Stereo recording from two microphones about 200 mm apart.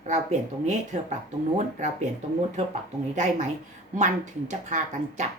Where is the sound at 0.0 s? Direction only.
35° right (ahead or behind).